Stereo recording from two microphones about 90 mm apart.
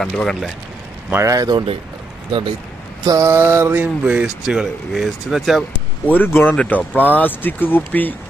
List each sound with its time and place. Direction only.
0.0 s speech: 5° left (ahead or behind)
1.1 s speech: 35° right (ahead or behind)
3.0 s mantra: 40° right (ahead or behind)
3.2 s mantra: 25° right (ahead or behind)
4.0 s speech: 10° right (ahead or behind)
6.1 s speech: 20° left (ahead or behind)